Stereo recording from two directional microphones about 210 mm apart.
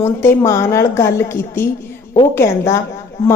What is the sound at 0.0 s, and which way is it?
A woman's voice, 10° left (ahead or behind).